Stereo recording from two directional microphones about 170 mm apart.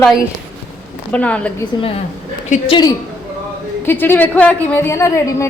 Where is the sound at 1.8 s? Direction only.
35° left (ahead or behind).